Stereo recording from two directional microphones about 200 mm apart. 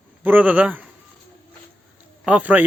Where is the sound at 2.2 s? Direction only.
5° right (ahead or behind).